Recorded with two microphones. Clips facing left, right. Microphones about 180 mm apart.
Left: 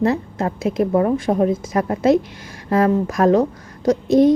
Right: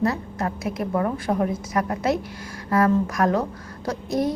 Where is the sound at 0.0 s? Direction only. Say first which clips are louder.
Left 5 dB; 25° left (ahead or behind).